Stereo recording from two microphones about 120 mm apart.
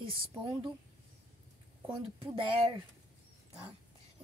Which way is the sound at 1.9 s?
45° right (ahead or behind).